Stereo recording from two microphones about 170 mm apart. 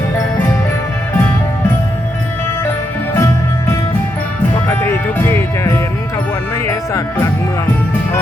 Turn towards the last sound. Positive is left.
turn(degrees=15)  # may be behind; listen again after turning